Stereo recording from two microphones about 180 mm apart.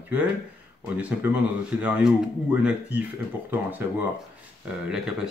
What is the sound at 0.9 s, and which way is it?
Speech, 5° right (ahead or behind).